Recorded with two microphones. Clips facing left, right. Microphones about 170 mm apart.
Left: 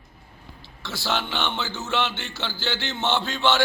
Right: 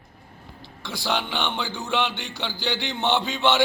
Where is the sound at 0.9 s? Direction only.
15° right (ahead or behind).